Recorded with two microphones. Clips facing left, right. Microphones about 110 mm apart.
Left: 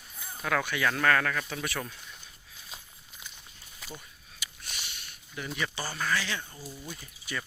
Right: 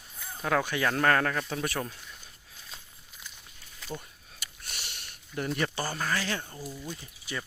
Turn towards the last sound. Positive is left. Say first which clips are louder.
# even
turn(degrees=-25)  # may be behind; listen again after turning